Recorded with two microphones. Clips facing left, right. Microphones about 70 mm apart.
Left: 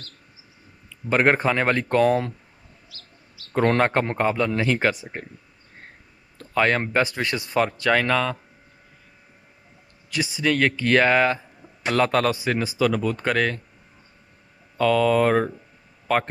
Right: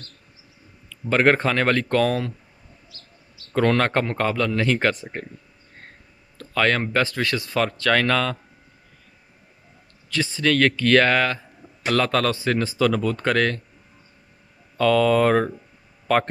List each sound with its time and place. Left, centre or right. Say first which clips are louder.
0.8 s speech: right 1 dB; centre
3.5 s speech: even; centre
6.3 s a sound: even; centre
6.9 s speech: even; centre
10.0 s speech: right 1 dB; centre
14.8 s speech: right 1 dB; centre